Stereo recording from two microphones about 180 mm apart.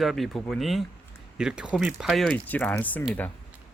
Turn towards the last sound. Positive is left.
turn(degrees=10)  # may be behind; listen again after turning